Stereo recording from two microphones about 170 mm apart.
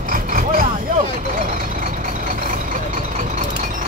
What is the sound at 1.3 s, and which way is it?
Vehicle, 50° right (ahead or behind).